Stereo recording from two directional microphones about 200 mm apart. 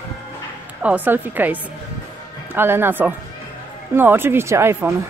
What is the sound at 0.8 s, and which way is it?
Speech, 10° right (ahead or behind).